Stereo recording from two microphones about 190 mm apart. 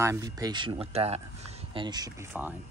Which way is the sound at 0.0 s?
15° right (ahead or behind).